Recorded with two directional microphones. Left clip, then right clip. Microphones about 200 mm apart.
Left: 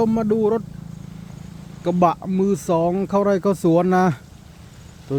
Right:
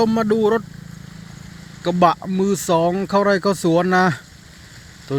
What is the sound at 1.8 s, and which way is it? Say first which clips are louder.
Speech: right 2 dB; 5° left (ahead or behind).